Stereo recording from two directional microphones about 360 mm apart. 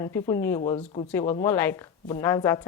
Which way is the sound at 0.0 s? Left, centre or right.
Centre.